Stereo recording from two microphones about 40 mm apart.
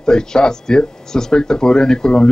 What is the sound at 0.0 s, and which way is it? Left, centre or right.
Speech, centre.